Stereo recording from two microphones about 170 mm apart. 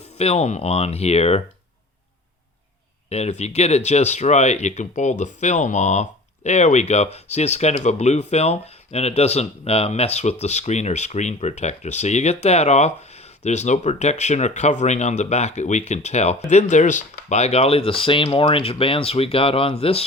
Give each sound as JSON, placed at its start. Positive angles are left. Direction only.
{"t": 0.2, "sound": "speech", "side_deg": 40}
{"t": 3.1, "sound": "speech", "side_deg": 40}